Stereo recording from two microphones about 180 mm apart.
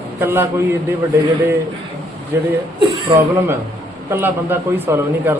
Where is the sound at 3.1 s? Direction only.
25° right (ahead or behind).